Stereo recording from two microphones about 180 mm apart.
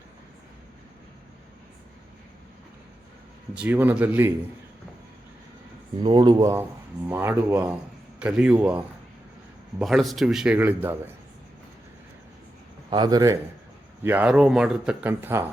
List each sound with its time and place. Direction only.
3.5 s speech: 5° right (ahead or behind)
6.0 s speech: 25° right (ahead or behind)
6.4 s a man's voice: 15° right (ahead or behind)
12.9 s speech: 20° right (ahead or behind)